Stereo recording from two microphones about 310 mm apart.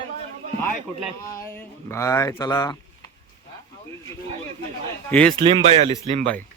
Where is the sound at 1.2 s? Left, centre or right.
Centre.